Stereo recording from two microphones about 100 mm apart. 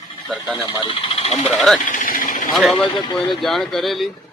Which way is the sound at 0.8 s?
65° left (ahead or behind).